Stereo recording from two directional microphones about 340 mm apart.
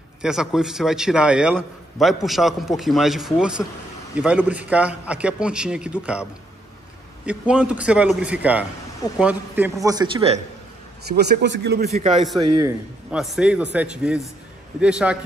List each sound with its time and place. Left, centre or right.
0.2 s a man's voice: centre
7.2 s a man's voice: centre
11.1 s a man's voice: right
12.4 s a man's voice: centre